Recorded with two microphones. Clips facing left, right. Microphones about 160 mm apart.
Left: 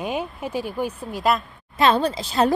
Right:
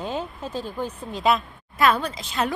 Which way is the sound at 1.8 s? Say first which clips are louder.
Left 3 dB; 30° left (ahead or behind).